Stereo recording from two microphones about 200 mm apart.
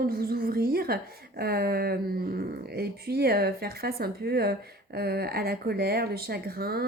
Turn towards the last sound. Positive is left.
turn(degrees=-50)  # may be behind; listen again after turning